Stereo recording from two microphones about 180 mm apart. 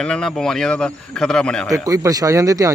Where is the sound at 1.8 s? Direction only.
20° right (ahead or behind).